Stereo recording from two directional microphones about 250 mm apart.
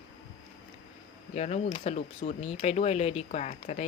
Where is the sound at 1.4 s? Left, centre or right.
Left.